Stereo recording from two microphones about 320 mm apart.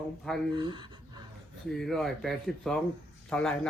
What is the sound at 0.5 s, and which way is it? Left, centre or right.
Speech, centre.